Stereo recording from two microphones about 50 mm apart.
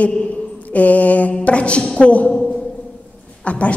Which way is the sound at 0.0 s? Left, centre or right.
Left.